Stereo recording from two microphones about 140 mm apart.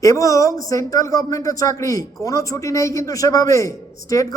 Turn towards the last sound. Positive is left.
turn(degrees=25)  # may be behind; listen again after turning